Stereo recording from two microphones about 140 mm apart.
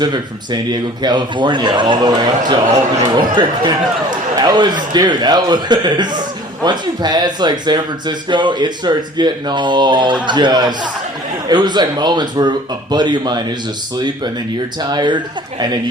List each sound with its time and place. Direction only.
0.0 s a man's voice: 30° right (ahead or behind)
14.8 s a man's voice: 30° right (ahead or behind)